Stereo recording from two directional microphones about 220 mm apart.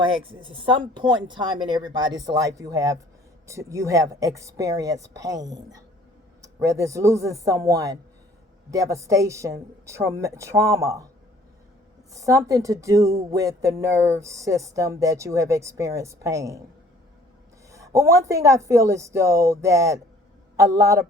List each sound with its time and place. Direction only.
0.5 s speech: 25° right (ahead or behind)
12.1 s speech: 15° right (ahead or behind)
17.7 s speech: 15° right (ahead or behind)